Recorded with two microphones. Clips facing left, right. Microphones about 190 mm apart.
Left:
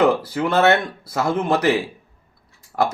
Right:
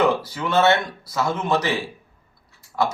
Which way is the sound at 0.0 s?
55° left (ahead or behind).